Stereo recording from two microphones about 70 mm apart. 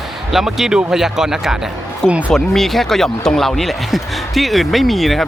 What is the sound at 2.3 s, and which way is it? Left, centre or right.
Speech, centre.